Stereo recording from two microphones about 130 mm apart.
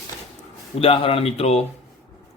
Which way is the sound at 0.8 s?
45° left (ahead or behind).